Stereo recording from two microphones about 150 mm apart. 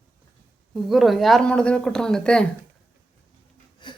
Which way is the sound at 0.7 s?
Centre (ahead or behind).